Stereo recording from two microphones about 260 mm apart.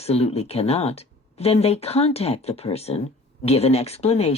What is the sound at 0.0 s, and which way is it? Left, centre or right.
Speech, left.